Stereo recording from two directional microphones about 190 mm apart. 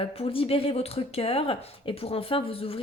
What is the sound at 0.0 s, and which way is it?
A woman's voice, 30° left (ahead or behind).